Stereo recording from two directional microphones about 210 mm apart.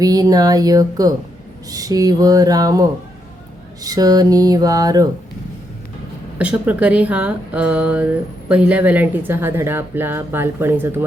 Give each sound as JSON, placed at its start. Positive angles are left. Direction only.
{"t": 0.0, "sound": "speech", "side_deg": -15}
{"t": 6.4, "sound": "speech", "side_deg": -5}